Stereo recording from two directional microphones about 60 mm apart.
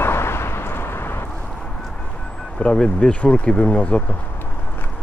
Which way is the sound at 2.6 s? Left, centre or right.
Centre.